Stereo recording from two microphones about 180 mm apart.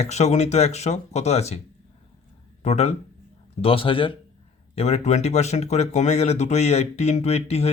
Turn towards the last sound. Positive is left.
turn(degrees=35)  # may be behind; listen again after turning